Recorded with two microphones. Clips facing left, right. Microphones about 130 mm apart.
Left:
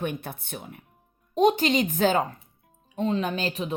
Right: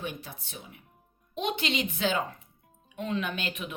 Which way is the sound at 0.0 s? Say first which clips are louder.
Left 7 dB; 55° left (ahead or behind).